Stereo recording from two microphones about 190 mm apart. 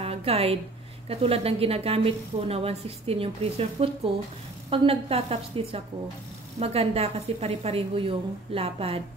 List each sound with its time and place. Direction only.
0.0 s a woman's voice: 30° right (ahead or behind)
6.6 s a woman's voice: 30° right (ahead or behind)